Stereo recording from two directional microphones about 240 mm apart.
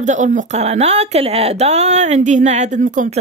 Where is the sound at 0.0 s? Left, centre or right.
Right.